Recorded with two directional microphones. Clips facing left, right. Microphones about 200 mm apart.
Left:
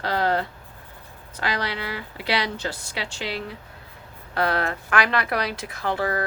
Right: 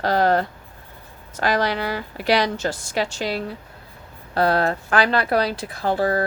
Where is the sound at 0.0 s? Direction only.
45° right (ahead or behind).